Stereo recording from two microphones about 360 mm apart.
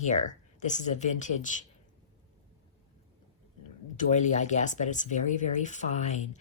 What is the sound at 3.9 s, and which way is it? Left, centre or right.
Speech, centre.